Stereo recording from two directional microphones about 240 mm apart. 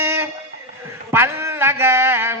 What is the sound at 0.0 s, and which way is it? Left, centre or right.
Music, centre.